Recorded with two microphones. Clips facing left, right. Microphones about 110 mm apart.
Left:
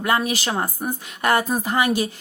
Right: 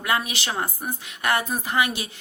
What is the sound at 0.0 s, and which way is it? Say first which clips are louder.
A woman's voice: left 4 dB; 40° left (ahead or behind).